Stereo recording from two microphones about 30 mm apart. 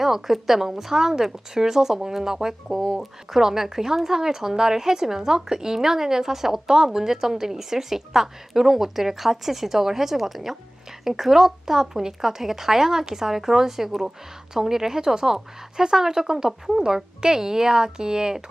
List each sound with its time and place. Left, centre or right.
0.0 s speech: centre